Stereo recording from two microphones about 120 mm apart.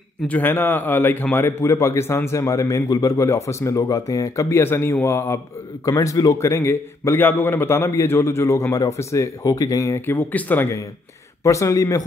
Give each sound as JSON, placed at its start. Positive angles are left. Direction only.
{"t": 0.3, "sound": "a man's voice", "side_deg": 15}